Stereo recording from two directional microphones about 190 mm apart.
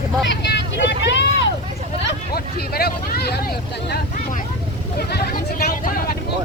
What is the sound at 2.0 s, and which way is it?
Speech, 55° left (ahead or behind).